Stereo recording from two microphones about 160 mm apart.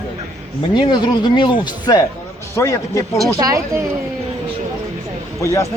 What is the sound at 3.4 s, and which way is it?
Speech, 20° right (ahead or behind).